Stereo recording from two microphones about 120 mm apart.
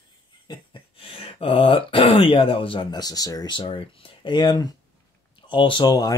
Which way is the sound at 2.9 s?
30° left (ahead or behind).